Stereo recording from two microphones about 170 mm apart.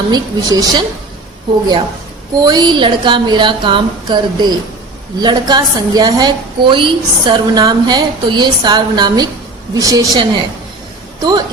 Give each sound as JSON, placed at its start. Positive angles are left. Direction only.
{"t": 0.1, "sound": "a woman's voice", "side_deg": -20}
{"t": 2.4, "sound": "a woman's voice", "side_deg": -25}